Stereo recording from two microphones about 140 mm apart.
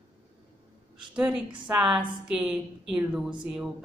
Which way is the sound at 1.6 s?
5° right (ahead or behind).